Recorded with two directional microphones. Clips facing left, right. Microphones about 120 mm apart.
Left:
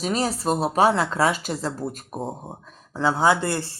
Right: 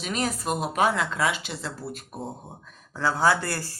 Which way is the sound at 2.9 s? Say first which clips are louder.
Left 3 dB; 20° left (ahead or behind).